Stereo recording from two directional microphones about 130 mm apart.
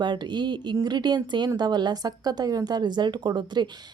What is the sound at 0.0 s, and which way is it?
A woman's voice, 35° right (ahead or behind).